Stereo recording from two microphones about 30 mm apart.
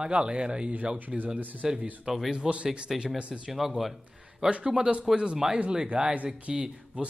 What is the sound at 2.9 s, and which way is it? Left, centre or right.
Speech, right.